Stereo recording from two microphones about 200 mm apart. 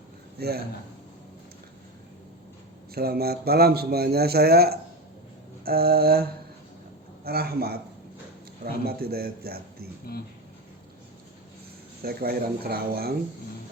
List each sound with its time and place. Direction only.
0.3 s speech: 50° right (ahead or behind)
2.9 s a man's voice: 50° right (ahead or behind)
7.3 s a man's voice: 50° right (ahead or behind)
12.0 s a man's voice: 50° right (ahead or behind)